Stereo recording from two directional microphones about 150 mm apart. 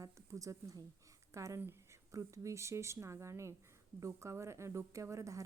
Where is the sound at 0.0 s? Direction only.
20° right (ahead or behind).